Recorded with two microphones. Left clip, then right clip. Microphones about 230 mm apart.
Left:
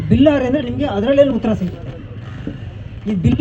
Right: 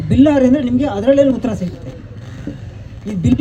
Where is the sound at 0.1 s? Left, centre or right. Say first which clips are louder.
Right 2 dB; right.